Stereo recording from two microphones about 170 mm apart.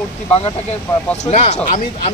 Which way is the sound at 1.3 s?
40° left (ahead or behind).